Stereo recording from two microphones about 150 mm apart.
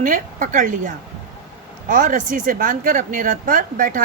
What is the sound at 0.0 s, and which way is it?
Speech, 60° right (ahead or behind).